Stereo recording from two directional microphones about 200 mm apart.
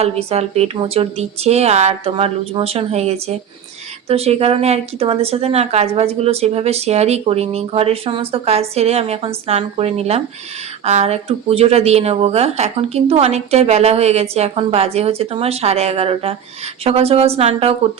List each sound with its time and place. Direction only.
0.0 s a woman's voice: 30° right (ahead or behind)